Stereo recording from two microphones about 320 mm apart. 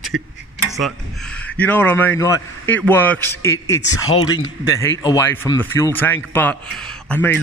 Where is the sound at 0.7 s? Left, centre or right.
Centre.